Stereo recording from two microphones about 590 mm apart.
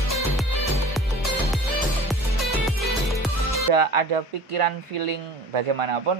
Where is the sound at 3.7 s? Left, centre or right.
Right.